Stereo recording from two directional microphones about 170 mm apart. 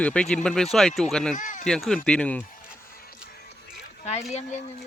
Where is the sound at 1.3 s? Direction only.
50° left (ahead or behind).